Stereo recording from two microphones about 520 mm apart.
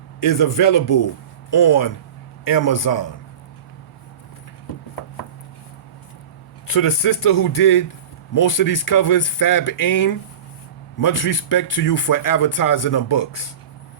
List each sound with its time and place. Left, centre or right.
0.2 s a man's voice: left
6.7 s speech: left